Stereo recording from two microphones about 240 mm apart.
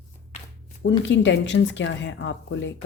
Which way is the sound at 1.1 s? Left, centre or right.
Left.